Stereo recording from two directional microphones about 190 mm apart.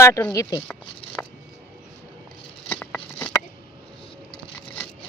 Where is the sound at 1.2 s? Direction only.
10° left (ahead or behind).